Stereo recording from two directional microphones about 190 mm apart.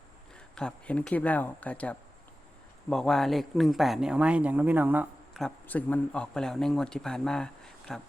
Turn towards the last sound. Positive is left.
turn(degrees=5)  # may be behind; listen again after turning